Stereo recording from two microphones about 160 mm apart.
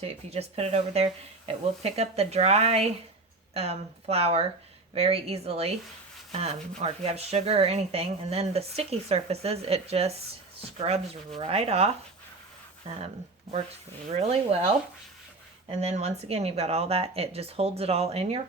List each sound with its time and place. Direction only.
0.0 s speech: 40° right (ahead or behind)
14.1 s speech: 40° right (ahead or behind)